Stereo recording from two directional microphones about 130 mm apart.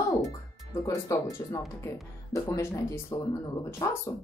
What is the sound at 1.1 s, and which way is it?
Speech, 25° left (ahead or behind).